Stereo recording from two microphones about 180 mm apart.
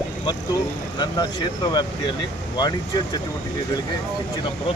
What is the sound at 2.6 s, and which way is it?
Speech, 20° left (ahead or behind).